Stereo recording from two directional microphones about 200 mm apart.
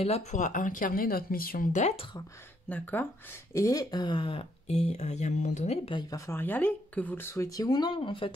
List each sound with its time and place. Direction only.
0.0 s speech: 35° left (ahead or behind)
2.7 s speech: 10° left (ahead or behind); by 8.3 s 25° left (ahead or behind)